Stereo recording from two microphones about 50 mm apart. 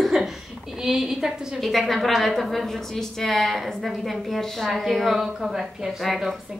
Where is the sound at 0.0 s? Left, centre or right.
Centre.